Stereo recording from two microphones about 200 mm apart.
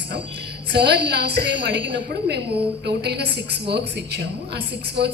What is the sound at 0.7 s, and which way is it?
A woman's voice, 55° right (ahead or behind).